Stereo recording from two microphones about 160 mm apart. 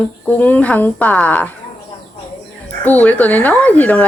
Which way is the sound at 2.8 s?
10° left (ahead or behind).